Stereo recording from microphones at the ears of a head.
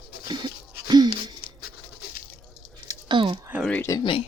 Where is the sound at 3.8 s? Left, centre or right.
Left.